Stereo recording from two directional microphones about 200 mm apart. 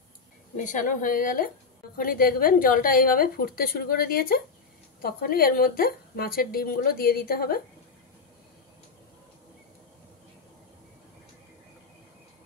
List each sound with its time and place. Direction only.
0.6 s a woman's voice: 40° left (ahead or behind)